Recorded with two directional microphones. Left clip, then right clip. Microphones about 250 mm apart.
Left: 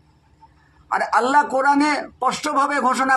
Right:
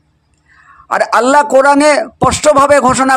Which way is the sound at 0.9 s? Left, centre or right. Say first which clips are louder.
Right 8 dB; right.